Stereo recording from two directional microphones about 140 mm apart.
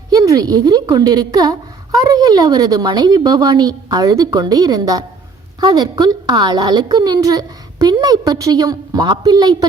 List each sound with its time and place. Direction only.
0.1 s a woman's voice: 25° right (ahead or behind)